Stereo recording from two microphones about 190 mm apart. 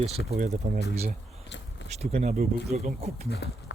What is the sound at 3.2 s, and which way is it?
Speech, 55° left (ahead or behind).